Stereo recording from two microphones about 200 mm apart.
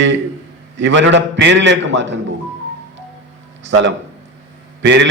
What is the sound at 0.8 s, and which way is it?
A man's voice, 65° right (ahead or behind).